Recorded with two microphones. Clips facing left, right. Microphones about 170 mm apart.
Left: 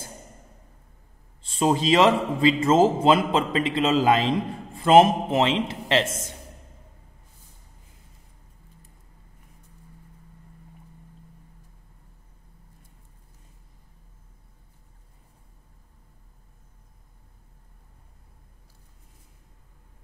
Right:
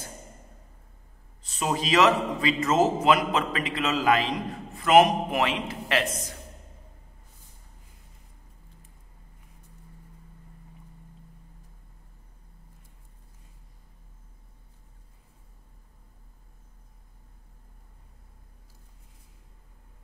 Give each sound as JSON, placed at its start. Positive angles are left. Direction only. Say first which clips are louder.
{"t": 1.4, "sound": "a man's voice", "louder": "left 6 dB", "side_deg": 30}